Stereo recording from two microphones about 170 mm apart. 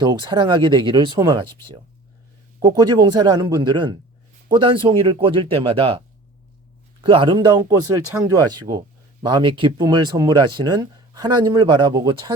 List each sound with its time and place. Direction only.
0.0 s speech: 25° right (ahead or behind)
2.6 s a man's voice: 25° right (ahead or behind)
7.0 s speech: 30° right (ahead or behind)